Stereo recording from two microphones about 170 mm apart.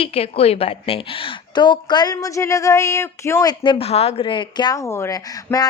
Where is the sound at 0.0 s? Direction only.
35° left (ahead or behind).